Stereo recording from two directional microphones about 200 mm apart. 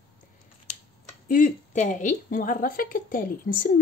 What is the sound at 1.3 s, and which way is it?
A woman's voice, 40° left (ahead or behind).